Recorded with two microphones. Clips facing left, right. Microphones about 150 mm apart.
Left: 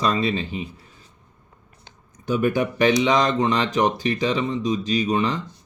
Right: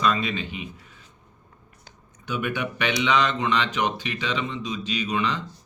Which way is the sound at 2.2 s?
40° left (ahead or behind).